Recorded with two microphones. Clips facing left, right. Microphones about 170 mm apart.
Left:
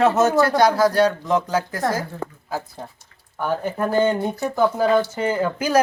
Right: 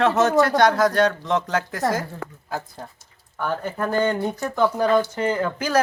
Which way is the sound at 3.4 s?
10° left (ahead or behind).